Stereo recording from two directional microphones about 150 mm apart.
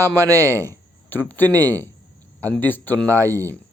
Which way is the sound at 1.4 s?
25° right (ahead or behind).